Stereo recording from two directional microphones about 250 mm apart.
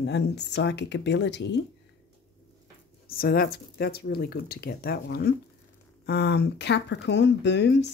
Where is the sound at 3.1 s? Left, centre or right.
Left.